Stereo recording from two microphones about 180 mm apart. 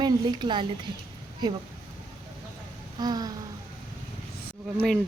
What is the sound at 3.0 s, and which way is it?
Speech, 20° right (ahead or behind).